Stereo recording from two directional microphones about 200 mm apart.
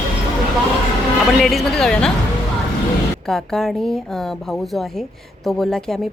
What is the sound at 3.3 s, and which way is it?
Speech, centre (ahead or behind).